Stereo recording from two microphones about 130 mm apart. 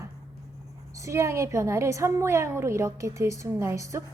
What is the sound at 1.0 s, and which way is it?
A woman's voice, 20° right (ahead or behind).